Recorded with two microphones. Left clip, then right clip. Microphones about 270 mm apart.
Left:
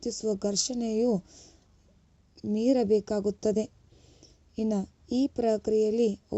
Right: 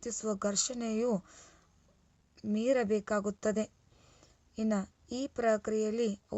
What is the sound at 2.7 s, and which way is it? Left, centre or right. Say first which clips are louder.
Speech: left 7 dB; centre.